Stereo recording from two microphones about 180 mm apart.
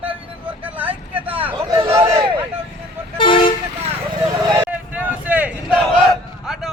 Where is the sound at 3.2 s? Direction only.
25° left (ahead or behind).